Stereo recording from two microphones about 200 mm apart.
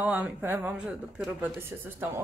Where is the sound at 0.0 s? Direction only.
5° right (ahead or behind).